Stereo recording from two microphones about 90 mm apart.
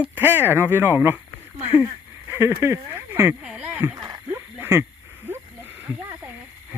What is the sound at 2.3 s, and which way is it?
Speech, 30° right (ahead or behind).